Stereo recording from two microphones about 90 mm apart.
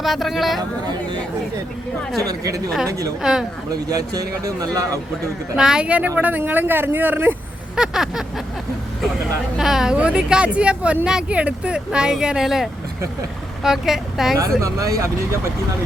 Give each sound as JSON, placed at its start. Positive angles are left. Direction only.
{"t": 0.0, "sound": "speech", "side_deg": 0}
{"t": 2.2, "sound": "a man's voice", "side_deg": -40}
{"t": 3.2, "sound": "speech", "side_deg": -5}
{"t": 3.8, "sound": "a man's voice", "side_deg": -40}
{"t": 5.5, "sound": "speech", "side_deg": -10}
{"t": 7.8, "sound": "speech", "side_deg": -5}
{"t": 9.6, "sound": "a woman's voice", "side_deg": -5}
{"t": 14.6, "sound": "a man's voice", "side_deg": -40}